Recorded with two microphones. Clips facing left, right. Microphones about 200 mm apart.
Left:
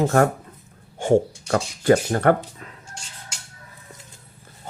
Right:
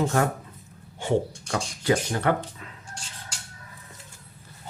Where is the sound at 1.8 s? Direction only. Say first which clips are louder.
Left 6 dB; 50° left (ahead or behind).